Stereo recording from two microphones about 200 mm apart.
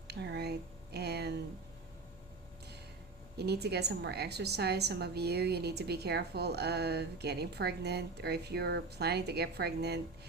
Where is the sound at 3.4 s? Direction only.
55° right (ahead or behind).